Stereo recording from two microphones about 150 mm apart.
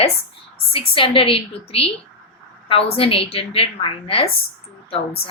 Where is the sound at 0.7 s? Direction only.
35° left (ahead or behind).